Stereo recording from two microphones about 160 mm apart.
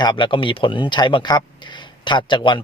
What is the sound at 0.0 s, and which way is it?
Speech, 30° left (ahead or behind).